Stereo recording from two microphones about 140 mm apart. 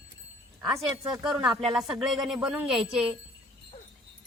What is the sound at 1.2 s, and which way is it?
Speech, 30° right (ahead or behind).